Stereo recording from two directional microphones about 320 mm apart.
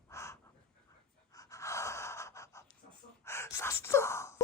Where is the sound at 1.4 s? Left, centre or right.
Centre.